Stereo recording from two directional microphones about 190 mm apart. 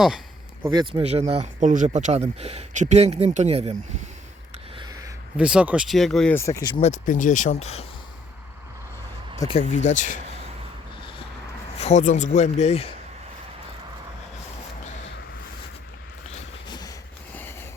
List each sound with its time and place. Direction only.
0.6 s speech: 20° right (ahead or behind)
1.0 s speech: 35° right (ahead or behind)
4.8 s a sound: 20° right (ahead or behind)
5.4 s speech: 5° right (ahead or behind); by 6.7 s 15° left (ahead or behind)
6.7 s speech: 40° left (ahead or behind)
9.4 s speech: 25° left (ahead or behind)
9.7 s speech: 40° left (ahead or behind)
11.8 s speech: 35° left (ahead or behind)
16.6 s a sound: 20° left (ahead or behind)